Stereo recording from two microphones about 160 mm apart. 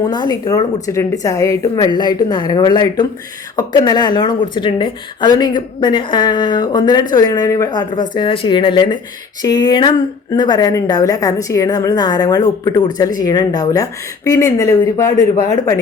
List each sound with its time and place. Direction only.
0.0 s a woman's voice: 25° left (ahead or behind)